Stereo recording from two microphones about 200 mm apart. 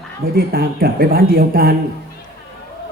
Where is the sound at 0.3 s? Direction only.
50° right (ahead or behind).